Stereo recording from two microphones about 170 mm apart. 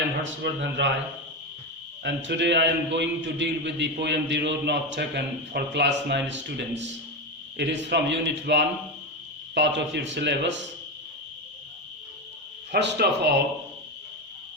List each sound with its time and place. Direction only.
0.4 s a man's voice: 90° right
2.0 s a man's voice: 90° right
12.7 s speech: 75° right (ahead or behind)